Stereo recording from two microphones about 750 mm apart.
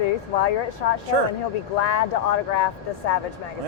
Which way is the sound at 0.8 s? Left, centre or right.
Left.